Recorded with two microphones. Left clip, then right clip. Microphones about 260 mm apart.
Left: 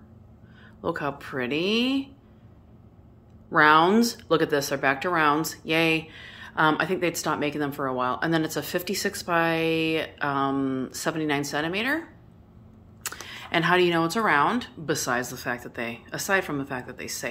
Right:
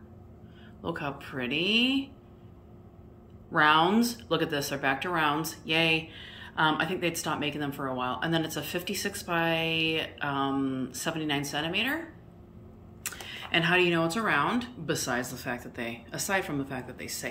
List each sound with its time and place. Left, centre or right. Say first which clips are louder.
0.8 s speech: left 6 dB; centre
3.5 s speech: left 5 dB; centre
13.0 s speech: left 2 dB; centre